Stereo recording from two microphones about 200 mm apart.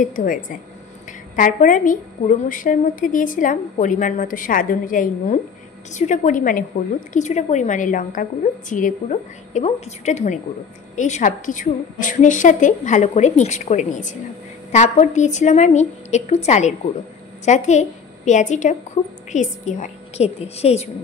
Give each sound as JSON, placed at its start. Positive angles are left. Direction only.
{"t": 0.0, "sound": "a woman's voice", "side_deg": 40}